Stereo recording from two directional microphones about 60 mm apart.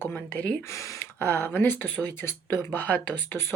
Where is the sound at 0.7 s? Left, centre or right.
Left.